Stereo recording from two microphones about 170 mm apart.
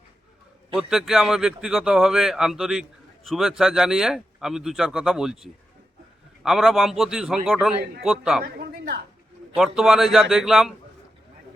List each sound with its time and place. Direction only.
0.8 s speech: centre (ahead or behind)
8.4 s a sound: 65° right (ahead or behind)
9.6 s speech: centre (ahead or behind)